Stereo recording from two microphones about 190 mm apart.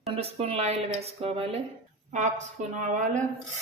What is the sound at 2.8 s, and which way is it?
Speech, 40° right (ahead or behind).